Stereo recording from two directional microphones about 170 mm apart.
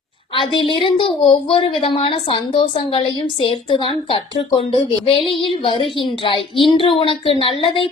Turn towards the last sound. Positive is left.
turn(degrees=30)  # may be behind; listen again after turning